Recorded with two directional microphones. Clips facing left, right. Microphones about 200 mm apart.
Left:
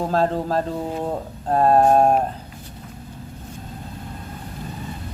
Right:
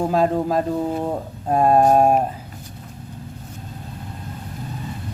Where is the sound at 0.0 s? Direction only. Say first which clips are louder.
Right 2 dB; 10° right (ahead or behind).